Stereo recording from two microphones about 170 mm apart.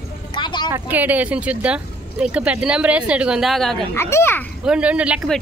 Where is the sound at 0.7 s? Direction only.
15° right (ahead or behind).